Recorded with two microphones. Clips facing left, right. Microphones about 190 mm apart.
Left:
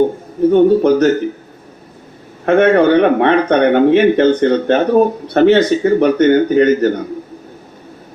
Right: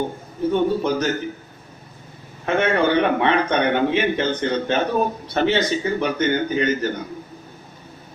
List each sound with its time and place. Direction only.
0.5 s speech: 60° left (ahead or behind)
2.5 s speech: 55° left (ahead or behind)